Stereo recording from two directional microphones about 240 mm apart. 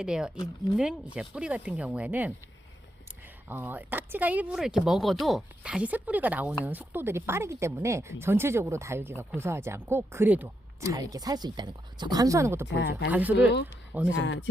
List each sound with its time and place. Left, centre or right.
0.0 s speech: centre
3.5 s speech: centre
12.7 s speech: left
13.1 s speech: centre
14.2 s speech: left